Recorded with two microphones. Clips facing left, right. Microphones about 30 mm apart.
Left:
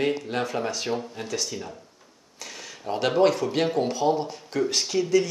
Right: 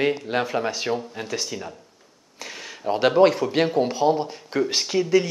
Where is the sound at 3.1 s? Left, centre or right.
Centre.